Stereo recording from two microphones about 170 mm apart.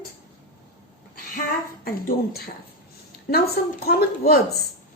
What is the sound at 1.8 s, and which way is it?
A woman's voice, 60° left (ahead or behind).